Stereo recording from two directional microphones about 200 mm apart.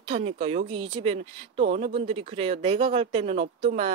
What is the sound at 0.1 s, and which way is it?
Speech, 30° right (ahead or behind).